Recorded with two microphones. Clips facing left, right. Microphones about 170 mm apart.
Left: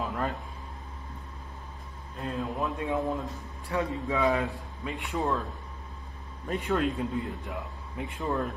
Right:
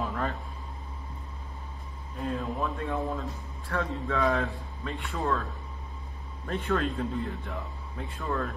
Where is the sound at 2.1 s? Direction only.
Centre (ahead or behind).